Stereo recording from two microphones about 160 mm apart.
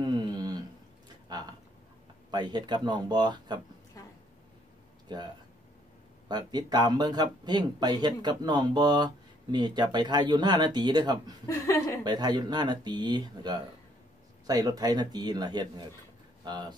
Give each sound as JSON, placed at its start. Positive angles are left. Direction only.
{"t": 0.0, "sound": "a sound", "side_deg": -25}
{"t": 2.3, "sound": "speech", "side_deg": -25}
{"t": 5.0, "sound": "speech", "side_deg": -25}
{"t": 11.4, "sound": "speech", "side_deg": 20}
{"t": 12.0, "sound": "speech", "side_deg": -25}